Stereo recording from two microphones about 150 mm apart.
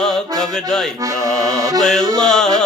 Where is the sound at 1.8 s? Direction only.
5° left (ahead or behind).